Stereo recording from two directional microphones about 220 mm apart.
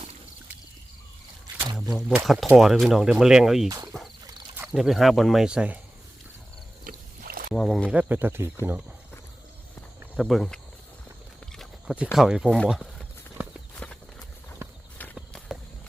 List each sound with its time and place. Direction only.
1.5 s speech: 10° right (ahead or behind)
6.8 s rowboat: 40° right (ahead or behind)
7.5 s speech: centre (ahead or behind)
10.2 s speech: centre (ahead or behind)
11.5 s a sound: centre (ahead or behind)
12.1 s clip-clop: centre (ahead or behind)